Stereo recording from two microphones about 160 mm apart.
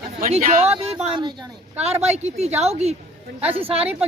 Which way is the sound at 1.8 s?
40° right (ahead or behind).